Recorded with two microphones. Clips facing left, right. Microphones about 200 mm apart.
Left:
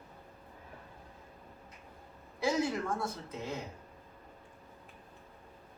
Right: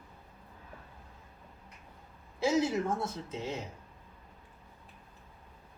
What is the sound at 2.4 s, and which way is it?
Speech, 25° right (ahead or behind).